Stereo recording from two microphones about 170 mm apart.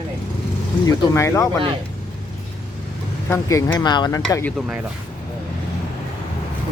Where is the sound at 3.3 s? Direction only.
20° left (ahead or behind).